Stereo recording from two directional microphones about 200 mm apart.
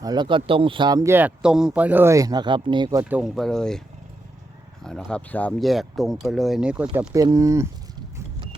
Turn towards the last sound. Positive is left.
turn(degrees=-15)  # may be behind; listen again after turning